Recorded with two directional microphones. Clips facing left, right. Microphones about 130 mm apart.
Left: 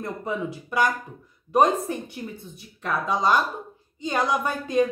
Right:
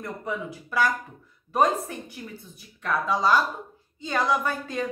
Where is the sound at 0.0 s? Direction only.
25° left (ahead or behind).